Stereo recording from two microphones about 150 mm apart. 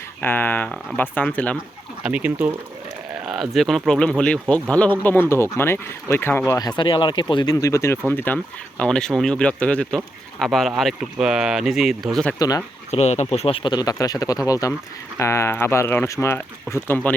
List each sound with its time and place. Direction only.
0.2 s speech: 15° left (ahead or behind)
2.0 s speech: 10° right (ahead or behind)
12.4 s speech: 25° left (ahead or behind)
12.9 s speech: 50° left (ahead or behind); by 17.2 s 10° left (ahead or behind)